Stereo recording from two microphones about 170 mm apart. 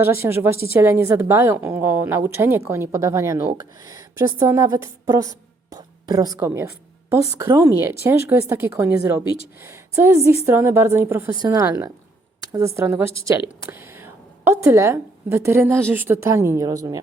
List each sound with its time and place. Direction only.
0.0 s a woman's voice: 15° right (ahead or behind)